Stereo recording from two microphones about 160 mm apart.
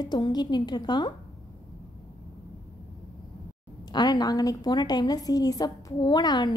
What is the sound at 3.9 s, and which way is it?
A woman's voice, 25° left (ahead or behind).